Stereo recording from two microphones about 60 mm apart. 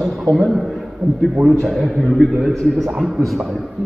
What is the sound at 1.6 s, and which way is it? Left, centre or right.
A man's voice, centre.